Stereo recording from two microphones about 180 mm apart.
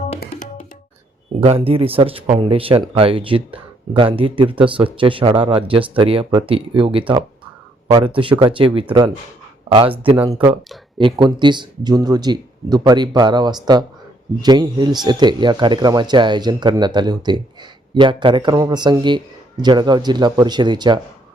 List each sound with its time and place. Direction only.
1.4 s speech: 30° right (ahead or behind)
10.2 s speech: 25° right (ahead or behind)